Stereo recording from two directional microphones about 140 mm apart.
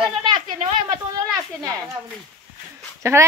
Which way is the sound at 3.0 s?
20° right (ahead or behind).